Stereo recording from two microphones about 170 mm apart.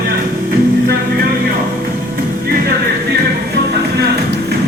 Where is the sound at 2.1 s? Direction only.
65° right (ahead or behind).